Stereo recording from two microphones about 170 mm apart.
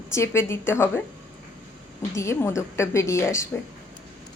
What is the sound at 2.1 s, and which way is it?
A woman's voice, 15° left (ahead or behind).